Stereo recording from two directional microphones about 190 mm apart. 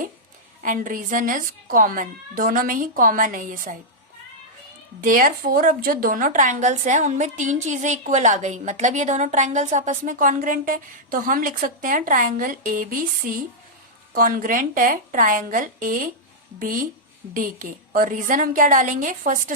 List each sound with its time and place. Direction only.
0.6 s speech: 45° right (ahead or behind)
4.9 s a woman's voice: 45° right (ahead or behind)